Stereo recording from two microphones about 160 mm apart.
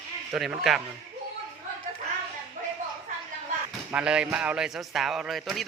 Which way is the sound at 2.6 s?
55° right (ahead or behind).